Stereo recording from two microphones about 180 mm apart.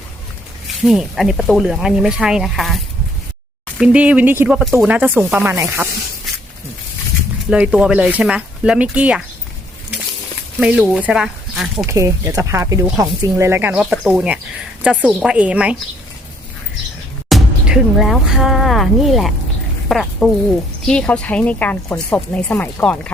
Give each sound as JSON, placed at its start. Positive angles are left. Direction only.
{"t": 0.8, "sound": "speech", "side_deg": 0}
{"t": 7.5, "sound": "speech", "side_deg": -5}
{"t": 10.6, "sound": "speech", "side_deg": -5}
{"t": 11.9, "sound": "speech", "side_deg": -15}
{"t": 17.2, "sound": "speech", "side_deg": 0}